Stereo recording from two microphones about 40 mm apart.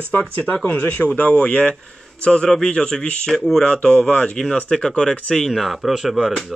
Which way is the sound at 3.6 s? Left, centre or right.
Left.